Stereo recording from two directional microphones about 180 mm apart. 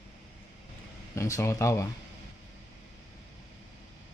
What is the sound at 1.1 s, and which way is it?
Speech, 15° left (ahead or behind).